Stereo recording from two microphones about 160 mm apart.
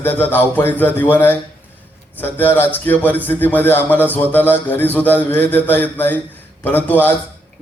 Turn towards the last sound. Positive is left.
turn(degrees=10)  # may be behind; listen again after turning